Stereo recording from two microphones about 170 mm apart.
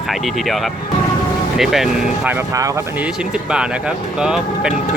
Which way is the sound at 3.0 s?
5° right (ahead or behind).